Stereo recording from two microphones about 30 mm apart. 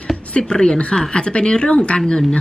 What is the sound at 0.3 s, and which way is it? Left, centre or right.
A woman's voice, left.